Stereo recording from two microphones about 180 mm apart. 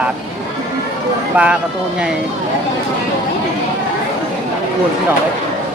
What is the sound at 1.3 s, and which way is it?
Speech, 5° right (ahead or behind).